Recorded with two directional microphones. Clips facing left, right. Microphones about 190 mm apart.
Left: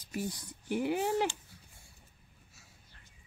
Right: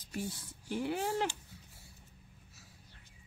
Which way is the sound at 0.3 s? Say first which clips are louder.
Left 4 dB; 15° left (ahead or behind).